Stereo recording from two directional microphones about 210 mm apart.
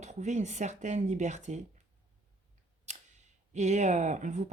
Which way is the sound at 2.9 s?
35° right (ahead or behind).